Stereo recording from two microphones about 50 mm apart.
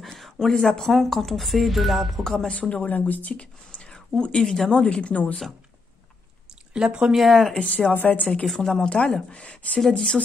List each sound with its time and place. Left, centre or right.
0.0 s speech: centre
2.3 s speech: centre
2.7 s speech: left
6.7 s speech: centre
7.2 s speech: centre
7.5 s speech: left
8.5 s speech: centre
8.8 s speech: centre
9.8 s speech: centre